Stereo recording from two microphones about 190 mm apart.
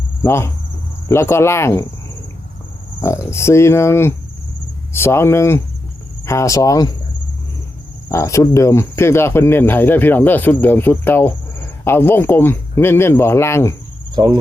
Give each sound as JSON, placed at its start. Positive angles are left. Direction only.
{"t": 0.2, "sound": "speech", "side_deg": 15}
{"t": 3.0, "sound": "speech", "side_deg": 15}
{"t": 8.1, "sound": "speech", "side_deg": 15}